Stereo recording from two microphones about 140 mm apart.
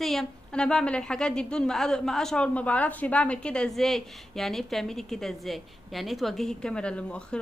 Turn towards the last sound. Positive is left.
turn(degrees=5)  # may be behind; listen again after turning